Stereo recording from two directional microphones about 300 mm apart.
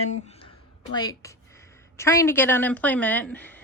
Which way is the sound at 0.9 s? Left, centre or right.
Centre.